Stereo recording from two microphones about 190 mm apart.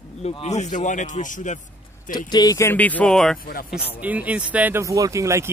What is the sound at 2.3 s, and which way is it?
Speech, 20° left (ahead or behind).